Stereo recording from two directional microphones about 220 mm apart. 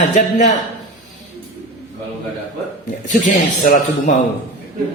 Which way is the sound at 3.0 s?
35° left (ahead or behind).